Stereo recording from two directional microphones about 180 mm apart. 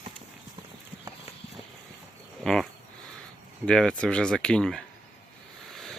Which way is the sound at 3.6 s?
5° left (ahead or behind).